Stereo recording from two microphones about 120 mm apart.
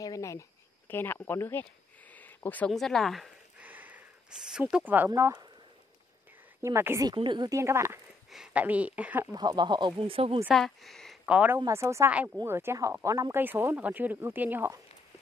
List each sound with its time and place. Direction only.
0.0 s a sound: 30° left (ahead or behind)
2.7 s speech: centre (ahead or behind)
3.5 s a sound: 15° right (ahead or behind)
6.6 s speech: 20° right (ahead or behind)
7.2 s speech: 40° right (ahead or behind)
7.5 s speech: 20° right (ahead or behind)
8.3 s speech: 10° right (ahead or behind)
9.3 s speech: 35° right (ahead or behind); by 10.4 s 50° right (ahead or behind)
10.5 s speech: centre (ahead or behind)
11.2 s speech: 10° right (ahead or behind)
11.5 s speech: 25° right (ahead or behind)
12.1 s speech: 10° right (ahead or behind)